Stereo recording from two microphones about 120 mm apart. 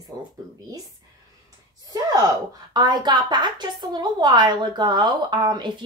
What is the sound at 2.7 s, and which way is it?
A woman's voice, 40° right (ahead or behind).